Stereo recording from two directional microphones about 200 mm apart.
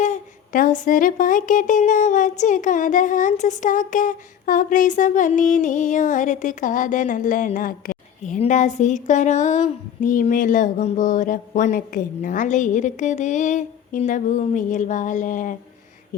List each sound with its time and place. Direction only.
0.0 s speech: 40° left (ahead or behind)